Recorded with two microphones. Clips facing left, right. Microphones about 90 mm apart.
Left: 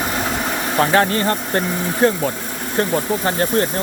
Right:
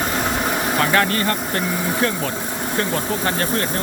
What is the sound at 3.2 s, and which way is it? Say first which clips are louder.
Speech: left 3 dB; 25° left (ahead or behind).